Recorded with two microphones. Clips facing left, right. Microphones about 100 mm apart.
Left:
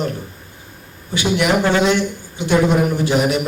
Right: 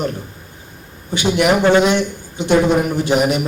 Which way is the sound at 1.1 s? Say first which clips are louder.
Right 2 dB; 20° right (ahead or behind).